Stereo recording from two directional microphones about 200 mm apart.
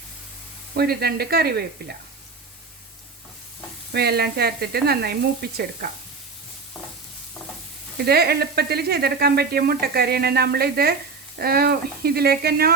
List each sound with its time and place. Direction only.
0.7 s speech: 55° right (ahead or behind)
3.9 s speech: 55° right (ahead or behind)
7.9 s speech: 50° right (ahead or behind)